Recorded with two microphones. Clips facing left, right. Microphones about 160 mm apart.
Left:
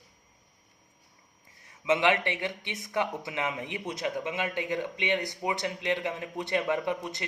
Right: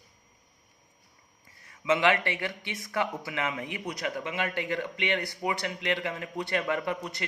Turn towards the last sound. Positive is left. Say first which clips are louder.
# left 1 dB
turn(degrees=20)  # may be behind; listen again after turning